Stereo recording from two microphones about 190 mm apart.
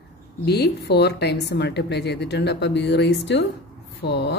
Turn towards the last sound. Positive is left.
turn(degrees=65)  # may be behind; listen again after turning